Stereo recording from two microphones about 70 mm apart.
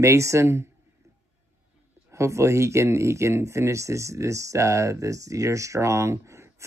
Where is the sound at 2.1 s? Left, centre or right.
Right.